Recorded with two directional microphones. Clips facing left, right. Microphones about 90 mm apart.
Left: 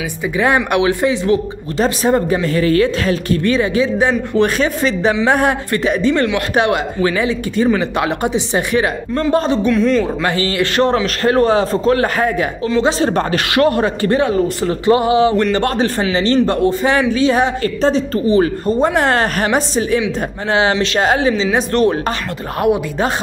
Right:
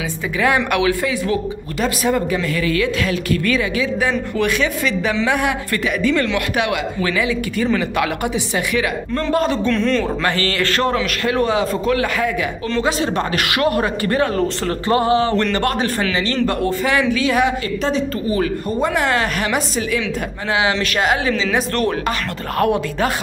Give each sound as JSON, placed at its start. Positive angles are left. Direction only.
{"t": 0.7, "sound": "a man's voice", "side_deg": 25}
{"t": 9.7, "sound": "speech", "side_deg": 5}
{"t": 10.2, "sound": "speech", "side_deg": 20}
{"t": 10.9, "sound": "a man's voice", "side_deg": 35}
{"t": 14.6, "sound": "a sound", "side_deg": 15}
{"t": 15.5, "sound": "a man's voice", "side_deg": 25}